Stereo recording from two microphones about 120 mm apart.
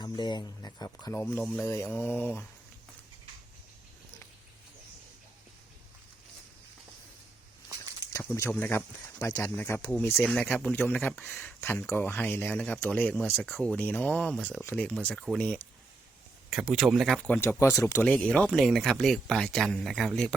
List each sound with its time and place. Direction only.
0.0 s speech: 35° left (ahead or behind)
1.2 s speech: 15° left (ahead or behind)
8.2 s speech: 15° left (ahead or behind)
10.2 s speech: 5° left (ahead or behind)
17.2 s speech: 10° left (ahead or behind)
17.6 s speech: 25° left (ahead or behind)
18.0 s speech: 5° left (ahead or behind)